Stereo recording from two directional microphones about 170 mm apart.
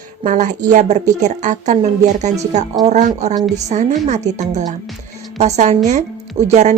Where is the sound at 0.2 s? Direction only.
45° right (ahead or behind).